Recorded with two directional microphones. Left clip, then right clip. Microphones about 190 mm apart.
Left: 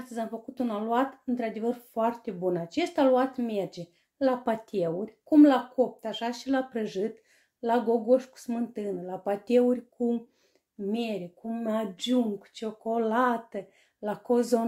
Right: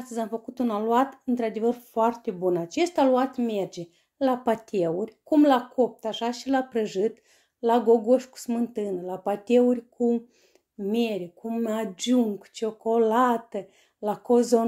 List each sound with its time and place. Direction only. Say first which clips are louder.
0.0 s speech: right 4 dB; 30° right (ahead or behind)
10.9 s speech: right 5 dB; 45° right (ahead or behind); by 14.6 s 25° right (ahead or behind)